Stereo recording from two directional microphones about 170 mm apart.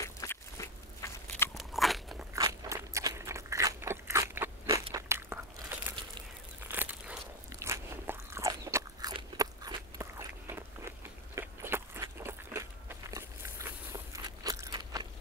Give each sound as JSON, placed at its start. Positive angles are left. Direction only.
{"t": 0.0, "sound": "biting", "side_deg": 20}
{"t": 1.5, "sound": "crunch", "side_deg": 0}
{"t": 2.3, "sound": "crunch", "side_deg": -20}
{"t": 4.9, "sound": "a sound", "side_deg": -15}
{"t": 6.7, "sound": "biting", "side_deg": -10}